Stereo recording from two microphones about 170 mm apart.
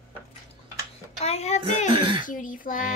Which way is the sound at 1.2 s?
40° left (ahead or behind).